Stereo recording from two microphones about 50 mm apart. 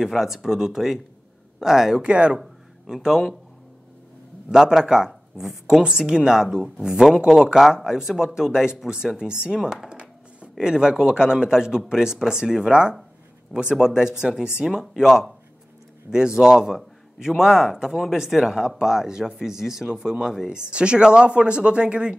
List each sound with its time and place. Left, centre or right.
0.0 s speech: centre
2.0 s a woman's voice: right
2.4 s a sound: centre
4.5 s speech: centre
16.3 s a woman's voice: centre